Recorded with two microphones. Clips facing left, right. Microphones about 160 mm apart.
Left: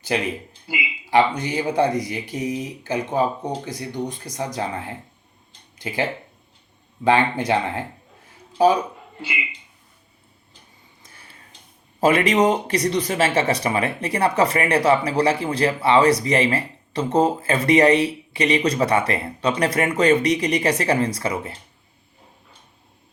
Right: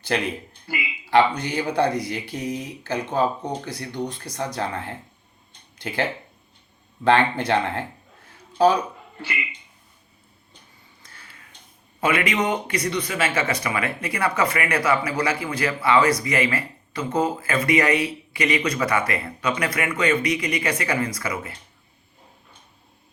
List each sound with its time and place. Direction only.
0.7 s speech: 15° left (ahead or behind)
7.0 s a man's voice: 15° left (ahead or behind)
11.0 s a sound: 25° left (ahead or behind)
11.9 s speech: 35° left (ahead or behind)